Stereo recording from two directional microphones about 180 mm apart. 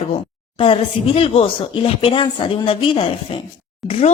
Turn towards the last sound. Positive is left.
turn(degrees=30)  # may be behind; listen again after turning